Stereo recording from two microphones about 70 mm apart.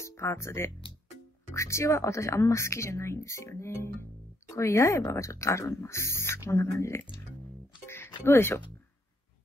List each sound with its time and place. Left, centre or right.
0.0 s speech: left
7.8 s music: left